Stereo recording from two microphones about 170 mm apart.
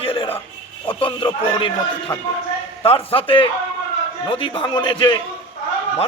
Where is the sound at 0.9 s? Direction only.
30° left (ahead or behind).